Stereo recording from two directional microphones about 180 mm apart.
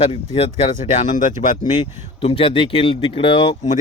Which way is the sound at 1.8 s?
30° left (ahead or behind).